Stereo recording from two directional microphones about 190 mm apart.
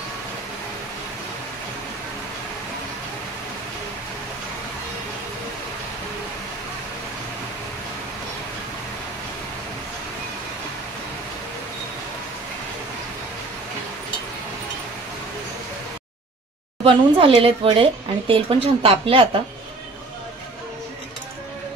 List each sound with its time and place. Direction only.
16.8 s speech: 30° right (ahead or behind)